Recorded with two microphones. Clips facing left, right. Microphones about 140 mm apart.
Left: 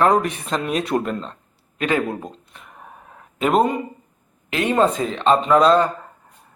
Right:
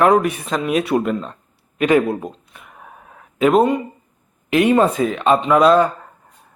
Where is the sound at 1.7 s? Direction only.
15° right (ahead or behind).